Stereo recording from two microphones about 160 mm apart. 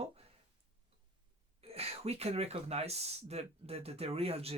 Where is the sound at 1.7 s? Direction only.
40° right (ahead or behind).